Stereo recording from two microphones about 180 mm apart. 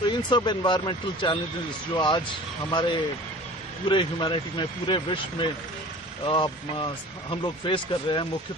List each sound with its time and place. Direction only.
0.2 s speech: 25° left (ahead or behind)